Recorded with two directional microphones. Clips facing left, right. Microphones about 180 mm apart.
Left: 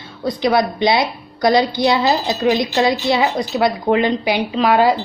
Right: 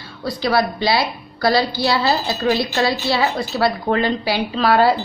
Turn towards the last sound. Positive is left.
turn(degrees=15)  # may be behind; listen again after turning